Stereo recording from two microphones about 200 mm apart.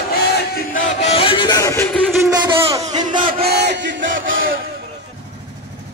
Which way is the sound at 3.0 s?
40° right (ahead or behind).